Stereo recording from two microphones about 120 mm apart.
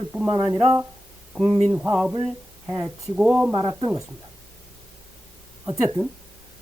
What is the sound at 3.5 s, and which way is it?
Speech, 35° right (ahead or behind).